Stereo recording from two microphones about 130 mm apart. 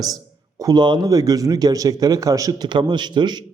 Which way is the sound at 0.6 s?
30° right (ahead or behind).